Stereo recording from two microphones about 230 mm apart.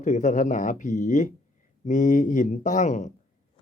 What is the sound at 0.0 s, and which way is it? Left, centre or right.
Speech, left.